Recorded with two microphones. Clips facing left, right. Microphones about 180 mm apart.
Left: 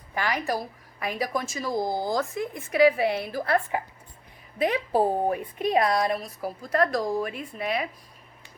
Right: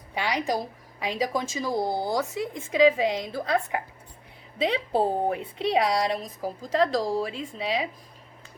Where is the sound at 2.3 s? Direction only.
90° right.